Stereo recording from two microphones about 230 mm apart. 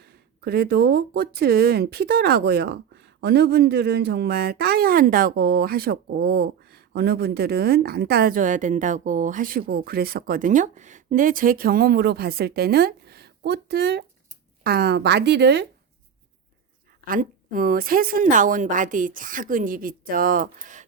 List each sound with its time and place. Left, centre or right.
0.4 s speech: right
17.1 s a woman's voice: right